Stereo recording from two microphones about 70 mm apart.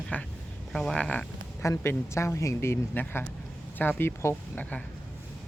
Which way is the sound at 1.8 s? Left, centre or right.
Left.